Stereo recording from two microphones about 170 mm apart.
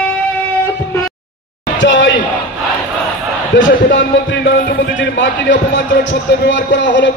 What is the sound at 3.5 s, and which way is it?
Speech, 90° left.